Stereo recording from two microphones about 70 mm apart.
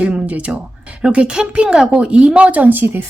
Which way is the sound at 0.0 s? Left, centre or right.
Right.